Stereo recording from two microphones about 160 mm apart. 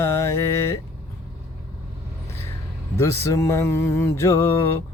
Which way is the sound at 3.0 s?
20° left (ahead or behind).